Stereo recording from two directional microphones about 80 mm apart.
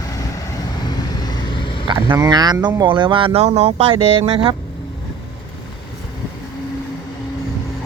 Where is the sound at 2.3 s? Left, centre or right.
Right.